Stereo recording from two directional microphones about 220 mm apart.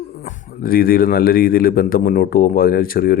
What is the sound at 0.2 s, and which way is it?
A man's voice, 40° left (ahead or behind).